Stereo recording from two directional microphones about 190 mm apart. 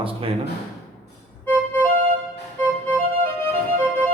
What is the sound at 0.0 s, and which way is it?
Speech, 30° right (ahead or behind).